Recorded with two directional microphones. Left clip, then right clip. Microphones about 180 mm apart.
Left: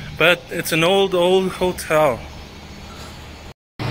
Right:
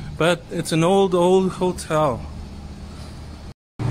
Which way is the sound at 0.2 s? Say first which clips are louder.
Left 4 dB; 15° right (ahead or behind).